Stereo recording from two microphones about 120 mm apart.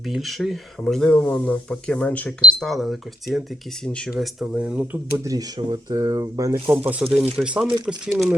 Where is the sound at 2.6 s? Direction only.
Centre (ahead or behind).